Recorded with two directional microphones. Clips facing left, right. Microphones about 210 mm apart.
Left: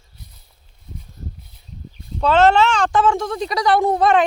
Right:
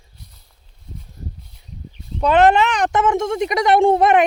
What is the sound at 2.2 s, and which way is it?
Speech, 15° right (ahead or behind).